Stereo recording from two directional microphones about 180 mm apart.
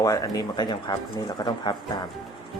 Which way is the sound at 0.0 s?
20° left (ahead or behind).